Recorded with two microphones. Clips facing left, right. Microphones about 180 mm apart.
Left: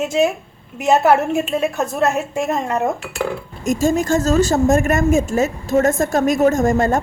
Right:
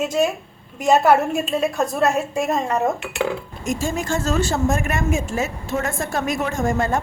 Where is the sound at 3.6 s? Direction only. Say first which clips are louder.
Left 7 dB; 45° left (ahead or behind).